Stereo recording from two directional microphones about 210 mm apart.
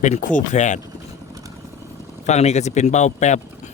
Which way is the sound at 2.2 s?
30° left (ahead or behind).